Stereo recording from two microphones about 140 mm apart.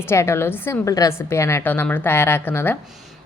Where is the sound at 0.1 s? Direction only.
20° left (ahead or behind).